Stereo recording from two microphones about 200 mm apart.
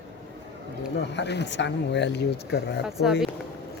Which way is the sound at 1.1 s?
60° left (ahead or behind).